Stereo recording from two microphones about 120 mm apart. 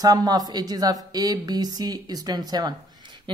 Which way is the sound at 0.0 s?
35° right (ahead or behind).